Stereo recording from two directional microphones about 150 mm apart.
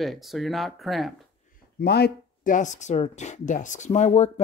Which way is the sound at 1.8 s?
90° left.